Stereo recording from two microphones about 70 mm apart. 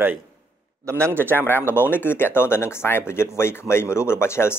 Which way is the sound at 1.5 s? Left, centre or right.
Left.